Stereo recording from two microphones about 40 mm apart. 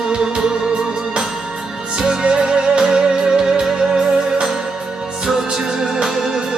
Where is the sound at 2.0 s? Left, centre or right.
Right.